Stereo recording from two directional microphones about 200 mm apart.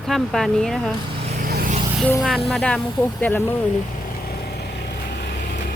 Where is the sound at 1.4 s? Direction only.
45° right (ahead or behind).